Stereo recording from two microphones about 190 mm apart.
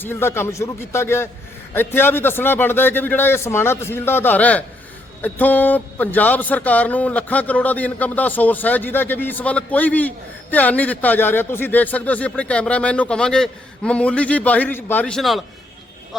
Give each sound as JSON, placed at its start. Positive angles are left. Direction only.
{"t": 0.0, "sound": "speech", "side_deg": 10}